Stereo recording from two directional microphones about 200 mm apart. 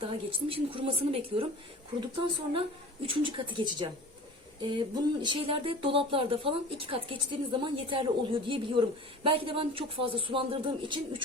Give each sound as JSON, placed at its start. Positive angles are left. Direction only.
{"t": 0.0, "sound": "a woman's voice", "side_deg": -25}
{"t": 5.2, "sound": "a woman's voice", "side_deg": -25}